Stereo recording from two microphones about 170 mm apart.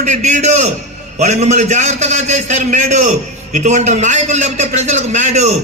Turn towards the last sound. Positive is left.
turn(degrees=-40)  # may be behind; listen again after turning